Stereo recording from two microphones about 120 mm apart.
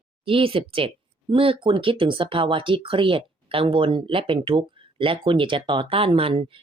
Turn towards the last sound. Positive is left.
turn(degrees=-50)  # may be behind; listen again after turning